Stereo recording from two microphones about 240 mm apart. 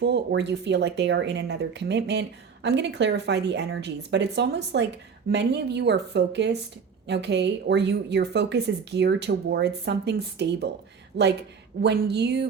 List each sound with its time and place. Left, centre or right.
0.0 s speech: right